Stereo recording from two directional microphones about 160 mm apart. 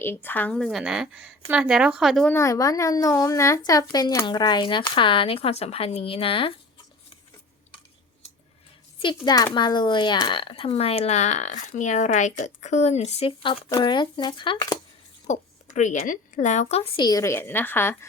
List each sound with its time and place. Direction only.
0.0 s a woman's voice: 15° left (ahead or behind)
2.3 s speech: 20° left (ahead or behind); by 6.5 s 35° left (ahead or behind)
9.2 s speech: 25° left (ahead or behind)
15.3 s a woman's voice: 45° left (ahead or behind)
17.1 s a woman's voice: 20° left (ahead or behind)